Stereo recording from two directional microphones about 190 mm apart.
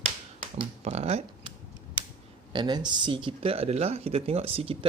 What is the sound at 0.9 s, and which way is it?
Speech, 35° right (ahead or behind).